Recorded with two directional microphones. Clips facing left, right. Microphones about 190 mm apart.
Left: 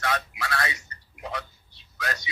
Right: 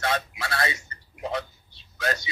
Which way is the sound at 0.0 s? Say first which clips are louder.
Right 2 dB; 25° right (ahead or behind).